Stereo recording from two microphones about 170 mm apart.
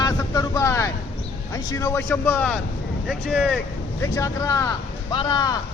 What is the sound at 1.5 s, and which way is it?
A man's voice, 20° left (ahead or behind).